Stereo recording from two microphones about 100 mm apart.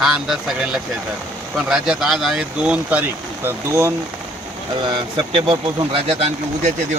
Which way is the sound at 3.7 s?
30° right (ahead or behind).